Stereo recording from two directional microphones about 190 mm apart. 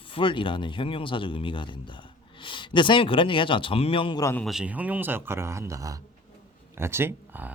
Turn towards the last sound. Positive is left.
turn(degrees=-10)  # may be behind; listen again after turning